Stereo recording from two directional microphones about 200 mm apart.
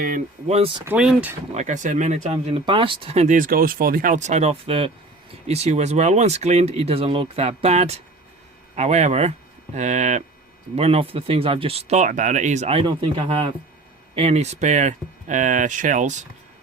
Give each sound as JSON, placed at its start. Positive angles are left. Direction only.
{"t": 0.0, "sound": "speech", "side_deg": -40}
{"t": 0.9, "sound": "speech", "side_deg": -5}
{"t": 1.5, "sound": "speech", "side_deg": -40}